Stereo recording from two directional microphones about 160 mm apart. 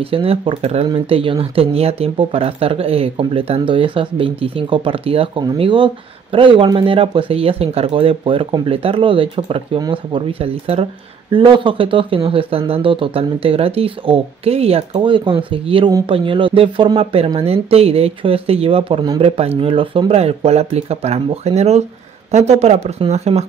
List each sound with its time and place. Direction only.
0.0 s speech: 35° right (ahead or behind)